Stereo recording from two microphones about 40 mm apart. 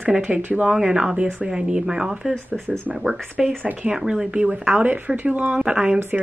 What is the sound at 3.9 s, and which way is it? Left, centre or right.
Speech, centre.